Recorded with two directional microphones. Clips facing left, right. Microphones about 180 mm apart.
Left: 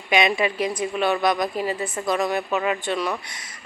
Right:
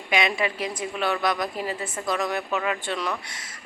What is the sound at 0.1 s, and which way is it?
A woman's voice, 20° left (ahead or behind).